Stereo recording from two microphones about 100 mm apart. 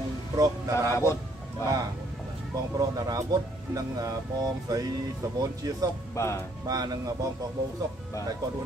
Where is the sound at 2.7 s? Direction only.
35° right (ahead or behind).